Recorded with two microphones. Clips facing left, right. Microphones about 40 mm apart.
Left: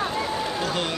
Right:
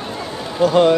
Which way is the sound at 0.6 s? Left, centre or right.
Centre.